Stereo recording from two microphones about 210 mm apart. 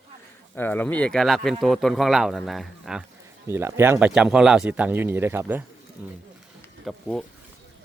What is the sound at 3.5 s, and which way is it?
Speech, 10° right (ahead or behind).